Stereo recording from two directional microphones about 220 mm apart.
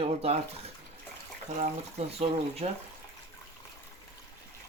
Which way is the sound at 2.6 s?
25° right (ahead or behind).